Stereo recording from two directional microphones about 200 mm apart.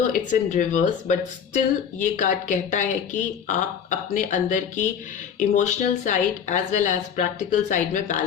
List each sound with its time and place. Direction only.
0.1 s speech: 40° left (ahead or behind)